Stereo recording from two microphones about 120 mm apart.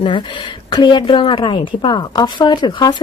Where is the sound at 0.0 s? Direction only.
45° left (ahead or behind).